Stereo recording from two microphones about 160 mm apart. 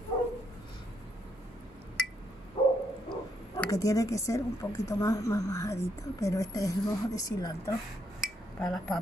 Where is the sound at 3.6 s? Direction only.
20° left (ahead or behind).